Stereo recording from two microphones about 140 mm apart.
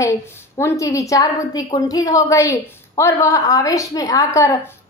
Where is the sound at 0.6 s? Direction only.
20° left (ahead or behind).